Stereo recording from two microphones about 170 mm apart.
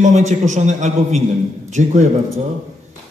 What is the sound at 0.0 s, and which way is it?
A man's voice, 45° right (ahead or behind).